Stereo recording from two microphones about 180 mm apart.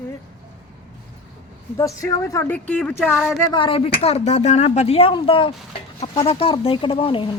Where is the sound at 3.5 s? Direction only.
30° left (ahead or behind).